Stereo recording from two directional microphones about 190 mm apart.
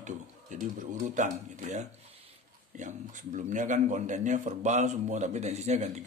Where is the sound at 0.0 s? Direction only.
40° right (ahead or behind).